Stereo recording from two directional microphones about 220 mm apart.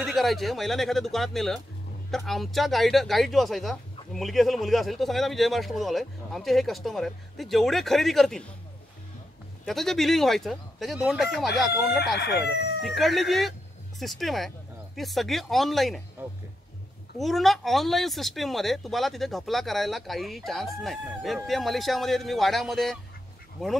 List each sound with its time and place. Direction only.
0.0 s speech: centre (ahead or behind)
9.7 s speech: centre (ahead or behind)
12.2 s speech: 45° left (ahead or behind)
12.8 s speech: centre (ahead or behind)
16.2 s music: 10° right (ahead or behind)
17.2 s speech: centre (ahead or behind)